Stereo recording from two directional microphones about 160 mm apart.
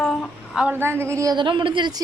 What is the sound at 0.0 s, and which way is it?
A woman's voice, centre (ahead or behind).